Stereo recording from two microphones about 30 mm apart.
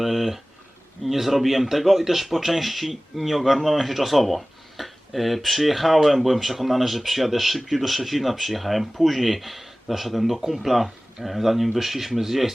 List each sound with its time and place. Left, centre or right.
0.0 s speech: centre